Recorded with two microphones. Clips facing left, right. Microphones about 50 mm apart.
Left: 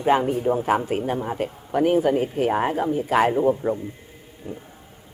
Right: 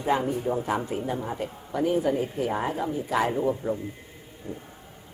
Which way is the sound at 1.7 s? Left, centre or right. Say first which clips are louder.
Left 5 dB; left.